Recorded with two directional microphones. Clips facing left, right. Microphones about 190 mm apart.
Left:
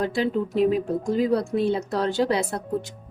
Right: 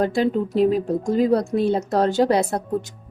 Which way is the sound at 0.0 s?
45° right (ahead or behind).